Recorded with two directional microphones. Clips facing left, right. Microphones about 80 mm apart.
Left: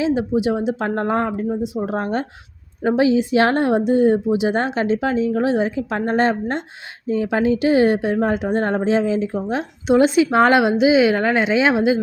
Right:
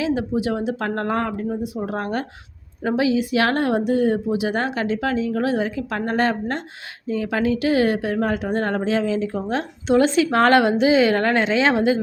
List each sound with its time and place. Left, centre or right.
0.0 s a woman's voice: left